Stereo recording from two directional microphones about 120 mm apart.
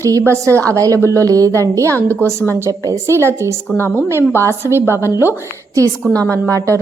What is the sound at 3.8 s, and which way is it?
A woman's voice, 20° left (ahead or behind).